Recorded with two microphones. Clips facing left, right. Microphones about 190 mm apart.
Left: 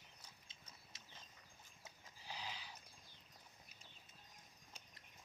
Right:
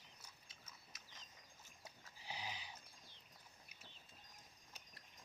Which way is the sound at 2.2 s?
15° right (ahead or behind).